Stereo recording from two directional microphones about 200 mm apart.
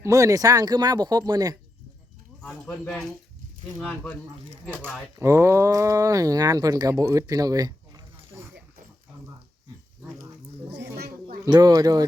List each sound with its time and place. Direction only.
0.0 s speech: 15° right (ahead or behind)
2.4 s speech: 5° left (ahead or behind)
5.1 s speech: 15° right (ahead or behind)
10.9 s a sound: 50° right (ahead or behind)
11.4 s speech: 20° right (ahead or behind)